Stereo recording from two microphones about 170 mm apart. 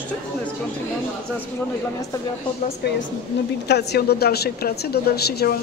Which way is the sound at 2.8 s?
70° left (ahead or behind).